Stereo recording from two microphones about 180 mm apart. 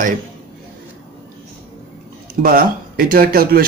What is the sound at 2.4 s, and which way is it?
A man's voice, 55° right (ahead or behind).